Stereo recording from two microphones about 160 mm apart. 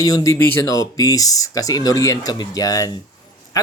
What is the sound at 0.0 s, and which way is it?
Speech, 20° left (ahead or behind).